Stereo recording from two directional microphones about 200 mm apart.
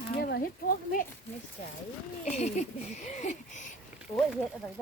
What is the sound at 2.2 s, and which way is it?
A child's voice, 35° left (ahead or behind).